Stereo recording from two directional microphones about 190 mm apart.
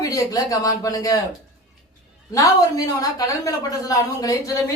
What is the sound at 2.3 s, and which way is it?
A woman's voice, 20° left (ahead or behind).